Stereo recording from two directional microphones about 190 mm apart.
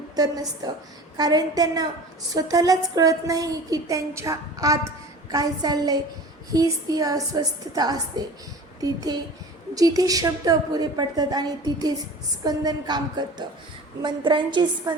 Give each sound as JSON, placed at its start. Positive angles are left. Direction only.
{"t": 0.2, "sound": "a woman's voice", "side_deg": -20}